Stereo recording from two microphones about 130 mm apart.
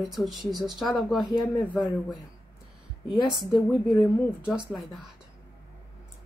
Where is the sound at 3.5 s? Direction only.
5° right (ahead or behind).